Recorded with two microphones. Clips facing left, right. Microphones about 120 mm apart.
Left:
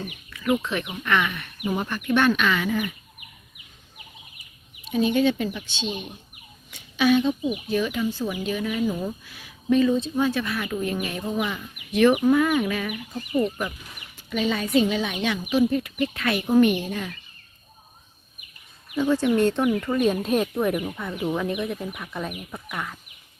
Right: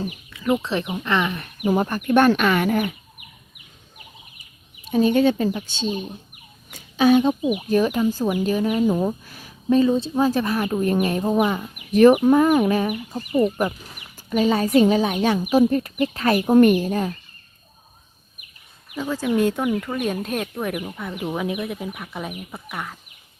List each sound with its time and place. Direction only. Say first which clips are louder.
0.3 s speech: right 1 dB; 25° right (ahead or behind); by 2.9 s 60° right (ahead or behind)
4.9 s speech: right 4 dB; 45° right (ahead or behind)
18.9 s speech: left 1 dB; 5° right (ahead or behind)